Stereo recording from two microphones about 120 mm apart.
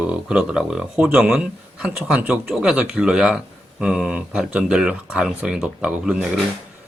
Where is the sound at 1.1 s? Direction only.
15° right (ahead or behind).